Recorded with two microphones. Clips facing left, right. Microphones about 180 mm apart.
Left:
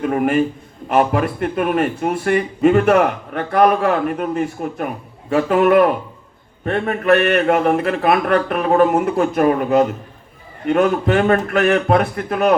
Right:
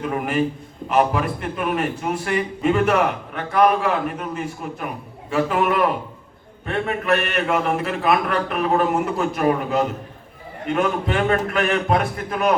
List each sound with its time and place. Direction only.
0.0 s speech: 50° left (ahead or behind)